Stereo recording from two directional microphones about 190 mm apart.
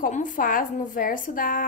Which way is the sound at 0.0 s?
45° left (ahead or behind).